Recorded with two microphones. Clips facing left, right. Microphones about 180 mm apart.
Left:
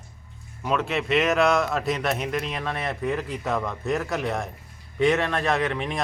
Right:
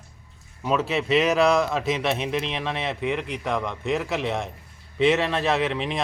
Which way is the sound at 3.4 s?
5° left (ahead or behind).